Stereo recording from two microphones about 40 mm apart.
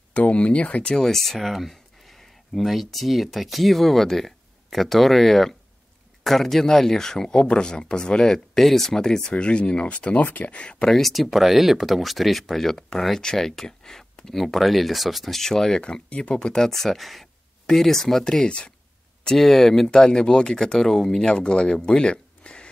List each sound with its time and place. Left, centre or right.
0.1 s speech: left
0.8 s speech: centre
1.1 s speech: centre
8.5 s speech: centre
9.3 s speech: left
10.2 s speech: left
10.5 s speech: left
10.9 s speech: centre
15.8 s speech: left
16.3 s speech: centre
19.9 s speech: centre
21.8 s a sound: left